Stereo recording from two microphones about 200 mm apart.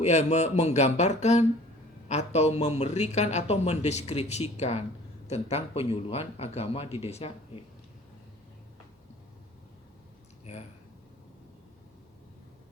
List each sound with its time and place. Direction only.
0.0 s speech: 35° left (ahead or behind)
10.4 s speech: 30° left (ahead or behind)